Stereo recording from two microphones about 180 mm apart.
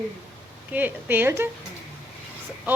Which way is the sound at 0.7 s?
10° right (ahead or behind).